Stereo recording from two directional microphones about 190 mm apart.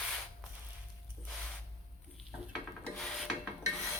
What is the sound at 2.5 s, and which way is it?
Rub, centre (ahead or behind).